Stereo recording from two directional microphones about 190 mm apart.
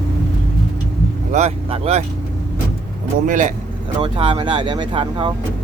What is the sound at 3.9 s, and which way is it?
Speech, 25° right (ahead or behind).